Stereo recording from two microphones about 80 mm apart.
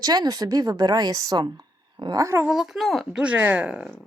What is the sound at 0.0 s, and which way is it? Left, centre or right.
Speech, right.